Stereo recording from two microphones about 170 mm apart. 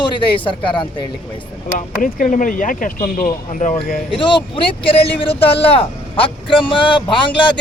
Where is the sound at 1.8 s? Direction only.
50° left (ahead or behind).